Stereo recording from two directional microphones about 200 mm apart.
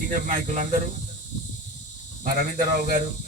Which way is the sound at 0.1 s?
40° right (ahead or behind).